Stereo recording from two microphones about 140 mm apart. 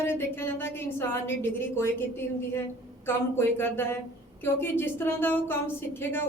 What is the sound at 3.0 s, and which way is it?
Speech, 15° left (ahead or behind).